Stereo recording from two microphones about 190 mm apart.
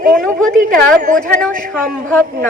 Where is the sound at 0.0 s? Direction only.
50° right (ahead or behind).